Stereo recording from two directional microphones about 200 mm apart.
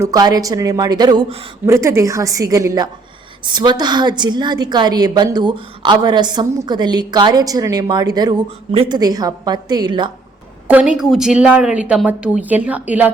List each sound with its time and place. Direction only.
0.0 s a woman's voice: 20° right (ahead or behind)
10.7 s a woman's voice: 5° right (ahead or behind)